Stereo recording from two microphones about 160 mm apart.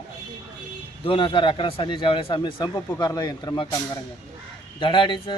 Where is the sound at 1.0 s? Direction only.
35° left (ahead or behind).